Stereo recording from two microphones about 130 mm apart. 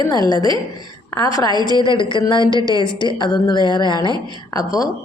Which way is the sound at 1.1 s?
25° left (ahead or behind).